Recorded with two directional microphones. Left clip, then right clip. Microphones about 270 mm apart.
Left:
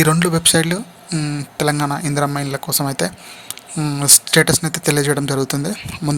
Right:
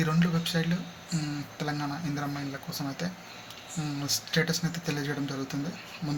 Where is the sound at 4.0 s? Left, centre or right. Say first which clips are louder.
Left 15 dB; left.